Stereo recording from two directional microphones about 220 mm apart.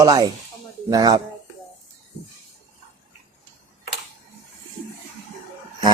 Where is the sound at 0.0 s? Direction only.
15° right (ahead or behind).